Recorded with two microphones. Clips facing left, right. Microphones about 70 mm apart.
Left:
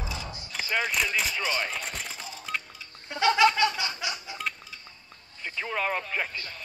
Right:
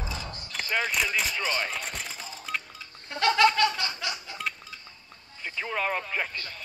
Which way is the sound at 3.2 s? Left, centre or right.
Centre.